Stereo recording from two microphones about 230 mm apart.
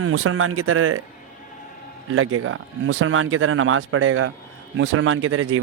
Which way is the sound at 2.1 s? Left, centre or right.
Right.